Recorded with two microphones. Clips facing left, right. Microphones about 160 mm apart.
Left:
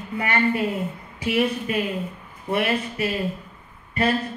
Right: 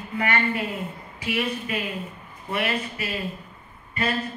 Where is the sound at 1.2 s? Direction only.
40° left (ahead or behind).